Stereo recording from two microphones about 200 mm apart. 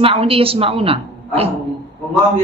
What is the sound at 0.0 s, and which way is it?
Speech, 30° right (ahead or behind).